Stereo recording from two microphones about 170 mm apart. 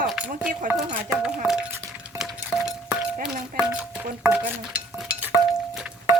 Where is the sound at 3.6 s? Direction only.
10° right (ahead or behind).